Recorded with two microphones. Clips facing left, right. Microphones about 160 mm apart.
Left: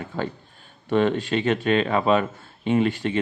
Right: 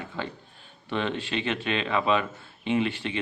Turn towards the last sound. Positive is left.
turn(degrees=45)  # may be behind; listen again after turning